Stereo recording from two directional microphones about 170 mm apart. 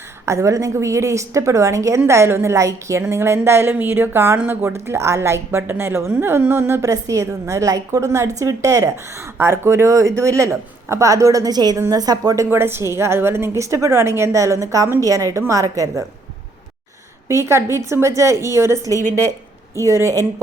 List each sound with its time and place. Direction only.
0.3 s a woman's voice: 15° right (ahead or behind)
17.2 s a woman's voice: 15° right (ahead or behind)